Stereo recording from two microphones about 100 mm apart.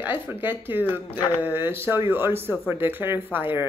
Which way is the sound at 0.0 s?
20° right (ahead or behind).